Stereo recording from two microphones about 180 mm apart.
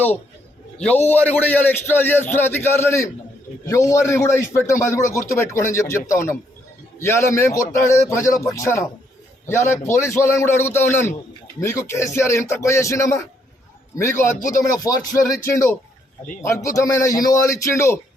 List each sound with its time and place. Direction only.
0.8 s a man's voice: 10° left (ahead or behind)